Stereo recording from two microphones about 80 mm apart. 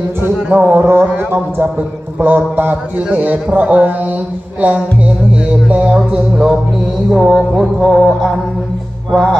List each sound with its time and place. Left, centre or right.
0.2 s a man's voice: right
7.1 s music: centre